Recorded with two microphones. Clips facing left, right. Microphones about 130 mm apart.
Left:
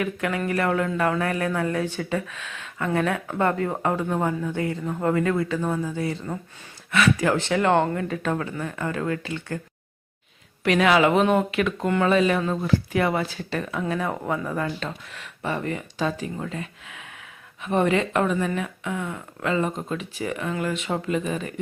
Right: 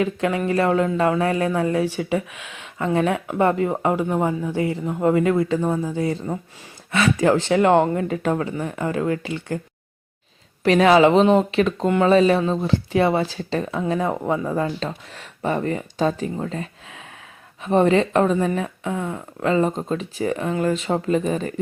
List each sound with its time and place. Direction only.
0.0 s speech: 25° right (ahead or behind)
10.6 s speech: 35° right (ahead or behind)